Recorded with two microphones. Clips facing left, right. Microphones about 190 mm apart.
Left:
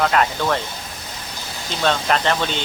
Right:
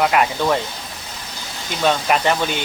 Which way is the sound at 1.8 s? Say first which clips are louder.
Right 2 dB; 10° right (ahead or behind).